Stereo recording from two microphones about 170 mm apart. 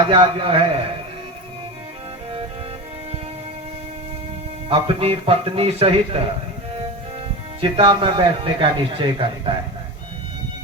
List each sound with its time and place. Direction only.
0.1 s a man's voice: 30° right (ahead or behind)
4.7 s a man's voice: 35° right (ahead or behind)
7.6 s a man's voice: 30° right (ahead or behind)